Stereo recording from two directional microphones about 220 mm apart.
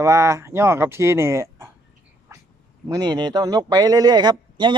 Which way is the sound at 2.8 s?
20° right (ahead or behind).